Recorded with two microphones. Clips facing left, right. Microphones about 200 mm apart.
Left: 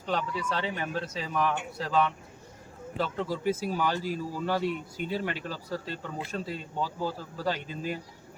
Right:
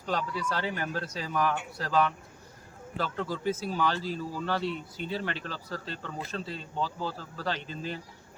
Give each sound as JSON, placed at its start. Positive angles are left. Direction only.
{"t": 0.1, "sound": "speech", "side_deg": 0}
{"t": 0.6, "sound": "speech", "side_deg": 20}
{"t": 1.3, "sound": "speech", "side_deg": 0}
{"t": 3.0, "sound": "speech", "side_deg": 10}